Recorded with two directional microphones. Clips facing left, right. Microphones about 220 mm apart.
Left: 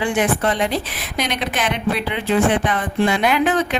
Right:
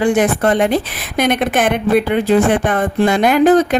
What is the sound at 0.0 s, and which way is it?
Speech, 45° right (ahead or behind).